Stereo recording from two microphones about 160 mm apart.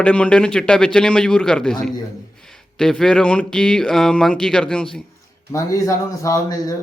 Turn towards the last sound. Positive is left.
turn(degrees=20)  # may be behind; listen again after turning